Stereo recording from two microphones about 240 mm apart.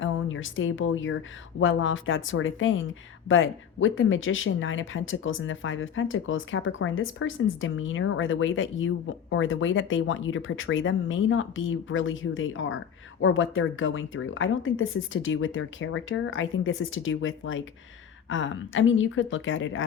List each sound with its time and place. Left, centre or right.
0.0 s speech: left